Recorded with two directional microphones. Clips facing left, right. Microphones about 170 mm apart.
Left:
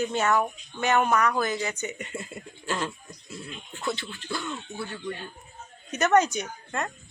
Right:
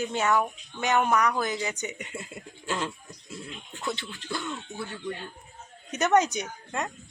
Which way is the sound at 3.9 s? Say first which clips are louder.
Left 1 dB; 20° right (ahead or behind).